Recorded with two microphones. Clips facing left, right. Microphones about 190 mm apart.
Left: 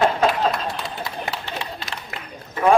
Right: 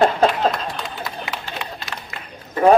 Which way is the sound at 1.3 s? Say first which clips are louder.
Even; 30° left (ahead or behind).